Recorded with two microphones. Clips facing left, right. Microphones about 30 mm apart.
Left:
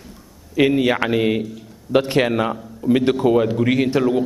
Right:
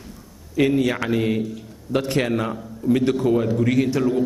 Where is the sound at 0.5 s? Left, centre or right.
Left.